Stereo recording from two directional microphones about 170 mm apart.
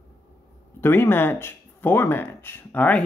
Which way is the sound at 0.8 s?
15° left (ahead or behind).